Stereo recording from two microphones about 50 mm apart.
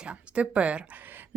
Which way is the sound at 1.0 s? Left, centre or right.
Right.